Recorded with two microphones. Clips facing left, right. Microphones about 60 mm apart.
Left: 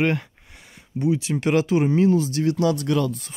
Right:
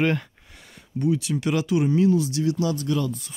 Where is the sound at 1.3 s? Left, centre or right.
Left.